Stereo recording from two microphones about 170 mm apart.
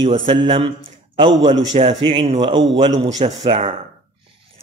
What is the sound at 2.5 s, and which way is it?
Mantra, 90° right.